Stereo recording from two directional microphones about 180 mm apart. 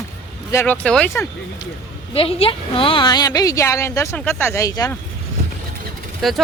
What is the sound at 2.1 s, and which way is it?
A woman's voice, 35° left (ahead or behind).